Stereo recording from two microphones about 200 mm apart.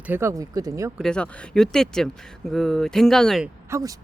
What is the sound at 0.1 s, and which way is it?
Speech, 15° right (ahead or behind).